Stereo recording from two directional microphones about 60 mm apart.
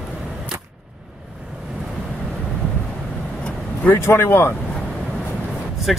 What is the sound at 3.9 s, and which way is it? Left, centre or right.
Speech, left.